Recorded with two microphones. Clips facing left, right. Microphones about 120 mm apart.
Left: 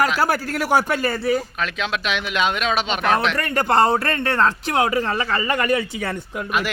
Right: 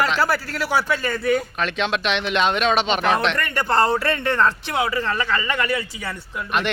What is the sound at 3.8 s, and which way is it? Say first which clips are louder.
Speech: left 1 dB; 20° left (ahead or behind).